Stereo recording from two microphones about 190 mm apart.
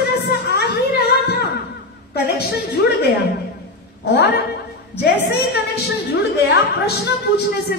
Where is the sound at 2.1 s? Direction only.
55° left (ahead or behind).